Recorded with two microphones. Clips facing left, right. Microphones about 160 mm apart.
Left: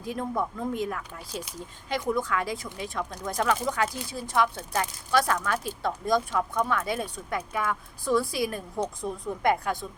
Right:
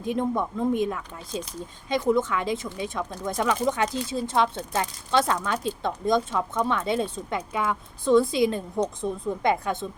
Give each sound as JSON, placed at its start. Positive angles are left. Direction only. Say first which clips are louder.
{"t": 0.0, "sound": "speech", "louder": "right 4 dB", "side_deg": -20}